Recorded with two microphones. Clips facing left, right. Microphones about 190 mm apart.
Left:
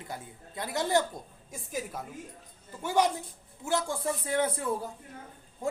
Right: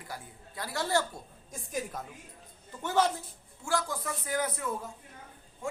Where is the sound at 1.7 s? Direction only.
5° left (ahead or behind).